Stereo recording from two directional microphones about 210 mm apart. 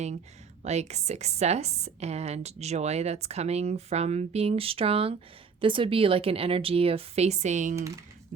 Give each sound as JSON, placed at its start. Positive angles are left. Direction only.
{"t": 0.6, "sound": "a woman's voice", "side_deg": -30}